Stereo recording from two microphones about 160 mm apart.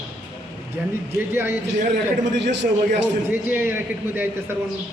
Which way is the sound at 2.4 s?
90° right.